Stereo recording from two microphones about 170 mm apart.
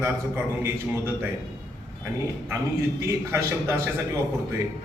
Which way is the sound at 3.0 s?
15° right (ahead or behind).